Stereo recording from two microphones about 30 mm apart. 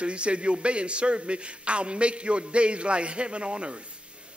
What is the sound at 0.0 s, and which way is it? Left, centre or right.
A man's voice, right.